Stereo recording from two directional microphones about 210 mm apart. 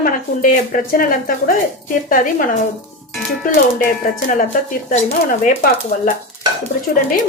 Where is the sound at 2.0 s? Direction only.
40° left (ahead or behind).